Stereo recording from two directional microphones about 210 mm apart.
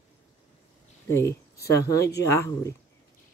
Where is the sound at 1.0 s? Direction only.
15° left (ahead or behind).